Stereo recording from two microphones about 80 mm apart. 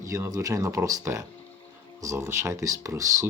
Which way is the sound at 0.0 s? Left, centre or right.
Right.